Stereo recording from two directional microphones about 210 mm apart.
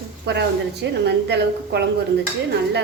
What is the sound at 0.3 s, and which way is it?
A woman's voice, 50° right (ahead or behind).